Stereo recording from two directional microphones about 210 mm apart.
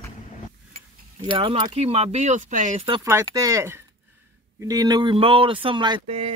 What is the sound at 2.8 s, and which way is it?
A man's voice, 25° right (ahead or behind).